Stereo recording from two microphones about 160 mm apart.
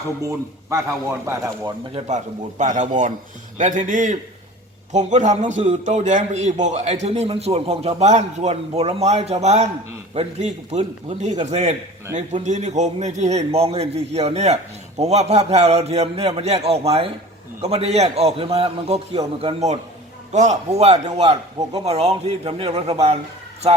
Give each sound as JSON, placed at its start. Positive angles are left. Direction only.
{"t": 0.2, "sound": "a man's voice", "side_deg": -20}
{"t": 2.0, "sound": "a man's voice", "side_deg": -50}